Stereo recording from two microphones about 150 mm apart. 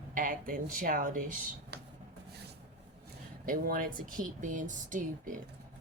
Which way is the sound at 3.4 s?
65° right (ahead or behind).